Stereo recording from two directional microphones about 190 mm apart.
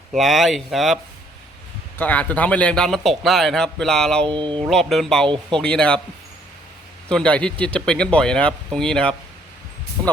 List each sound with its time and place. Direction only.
0.1 s a man's voice: centre (ahead or behind)
2.0 s a man's voice: 10° left (ahead or behind)
4.3 s speech: 25° right (ahead or behind)
4.6 s a man's voice: centre (ahead or behind)
7.1 s a man's voice: 5° left (ahead or behind)